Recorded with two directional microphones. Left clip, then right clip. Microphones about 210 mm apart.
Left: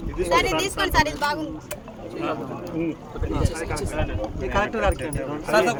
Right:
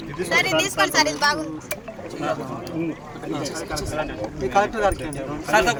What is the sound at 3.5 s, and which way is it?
Speech, 15° left (ahead or behind).